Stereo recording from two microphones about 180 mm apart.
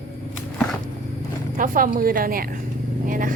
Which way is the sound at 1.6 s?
50° right (ahead or behind).